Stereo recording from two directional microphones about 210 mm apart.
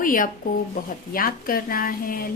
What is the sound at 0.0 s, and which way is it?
A woman's voice, 40° left (ahead or behind).